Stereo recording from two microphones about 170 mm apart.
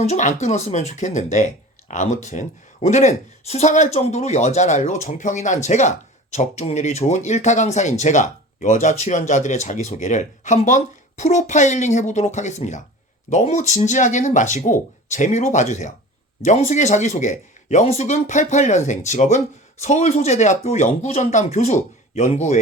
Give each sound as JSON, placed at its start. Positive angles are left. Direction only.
{"t": 0.0, "sound": "speech", "side_deg": 45}